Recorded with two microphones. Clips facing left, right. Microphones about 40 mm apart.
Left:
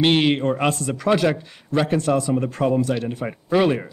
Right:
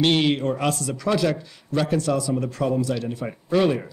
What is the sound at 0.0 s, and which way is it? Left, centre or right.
Speech, centre.